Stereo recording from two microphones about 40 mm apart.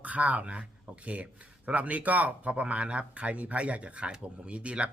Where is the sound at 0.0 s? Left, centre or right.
Right.